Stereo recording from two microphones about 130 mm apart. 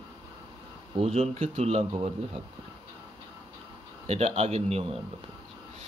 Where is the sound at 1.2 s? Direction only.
50° right (ahead or behind).